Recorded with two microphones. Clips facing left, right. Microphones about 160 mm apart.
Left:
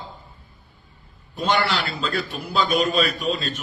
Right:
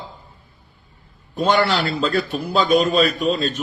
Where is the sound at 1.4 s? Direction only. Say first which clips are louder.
Right 4 dB; 45° right (ahead or behind).